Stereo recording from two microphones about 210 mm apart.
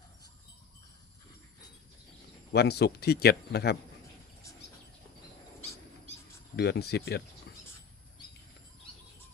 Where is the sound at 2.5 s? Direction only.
50° left (ahead or behind).